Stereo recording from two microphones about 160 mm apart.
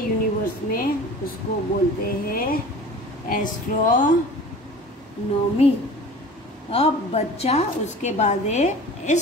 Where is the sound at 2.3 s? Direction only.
65° left (ahead or behind).